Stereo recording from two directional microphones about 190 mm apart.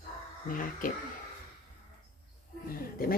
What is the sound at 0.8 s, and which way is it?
Speech, 45° left (ahead or behind).